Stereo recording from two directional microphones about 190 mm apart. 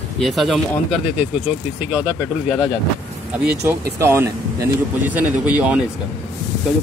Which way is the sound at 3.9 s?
15° right (ahead or behind).